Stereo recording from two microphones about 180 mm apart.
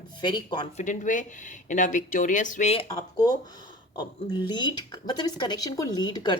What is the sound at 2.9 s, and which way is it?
Speech, 20° left (ahead or behind).